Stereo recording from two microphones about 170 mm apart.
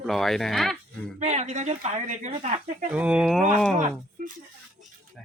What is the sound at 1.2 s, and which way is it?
Speech, 45° right (ahead or behind).